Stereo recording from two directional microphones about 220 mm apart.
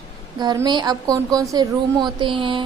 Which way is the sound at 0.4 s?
20° right (ahead or behind).